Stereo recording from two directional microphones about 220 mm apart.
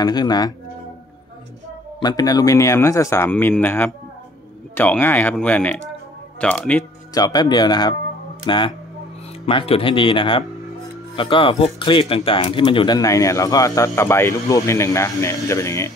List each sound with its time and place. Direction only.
0.0 s speech: 20° left (ahead or behind)
2.0 s speech: 15° left (ahead or behind)
7.2 s speech: 20° left (ahead or behind)